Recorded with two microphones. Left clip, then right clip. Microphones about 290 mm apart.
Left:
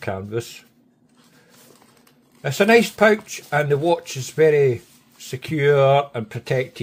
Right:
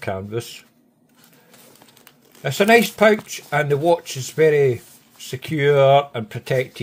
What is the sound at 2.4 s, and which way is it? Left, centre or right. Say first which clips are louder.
Speech: right 1 dB; centre.